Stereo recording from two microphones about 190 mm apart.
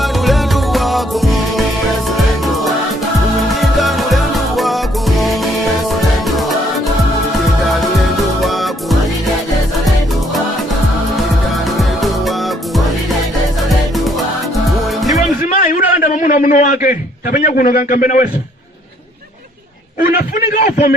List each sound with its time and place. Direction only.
0.0 s music: centre (ahead or behind)
8.4 s music: centre (ahead or behind)
11.6 s music: centre (ahead or behind)
14.5 s music: centre (ahead or behind)
15.5 s a sound: 45° left (ahead or behind)
16.8 s a man's voice: 45° left (ahead or behind)
20.0 s a man's voice: 45° left (ahead or behind)